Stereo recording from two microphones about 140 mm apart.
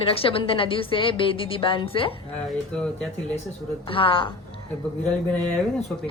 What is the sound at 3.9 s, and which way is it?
Speech, 40° left (ahead or behind).